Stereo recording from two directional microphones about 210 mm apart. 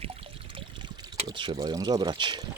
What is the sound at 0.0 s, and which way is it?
Pour, 25° right (ahead or behind).